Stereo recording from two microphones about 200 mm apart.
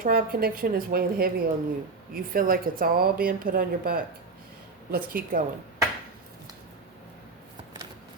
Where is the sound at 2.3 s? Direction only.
45° right (ahead or behind).